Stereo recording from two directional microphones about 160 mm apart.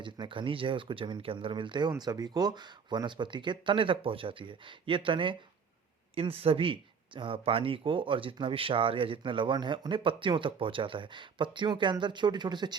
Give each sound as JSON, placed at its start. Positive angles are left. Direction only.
{"t": 0.0, "sound": "speech", "side_deg": -30}